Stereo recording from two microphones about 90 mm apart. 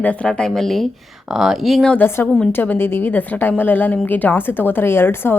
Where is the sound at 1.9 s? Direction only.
25° left (ahead or behind).